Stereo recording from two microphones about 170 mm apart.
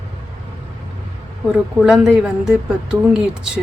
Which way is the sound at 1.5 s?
5° right (ahead or behind).